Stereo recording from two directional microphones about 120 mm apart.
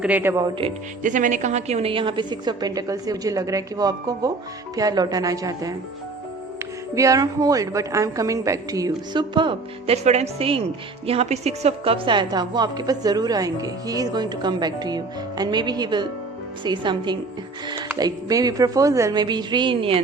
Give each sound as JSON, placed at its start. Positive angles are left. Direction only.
{"t": 0.0, "sound": "speech", "side_deg": -15}
{"t": 0.6, "sound": "speech", "side_deg": -50}
{"t": 1.0, "sound": "a woman's voice", "side_deg": -90}
{"t": 6.9, "sound": "a woman's voice", "side_deg": -25}
{"t": 9.9, "sound": "a woman's voice", "side_deg": -65}
{"t": 19.2, "sound": "a woman's voice", "side_deg": -35}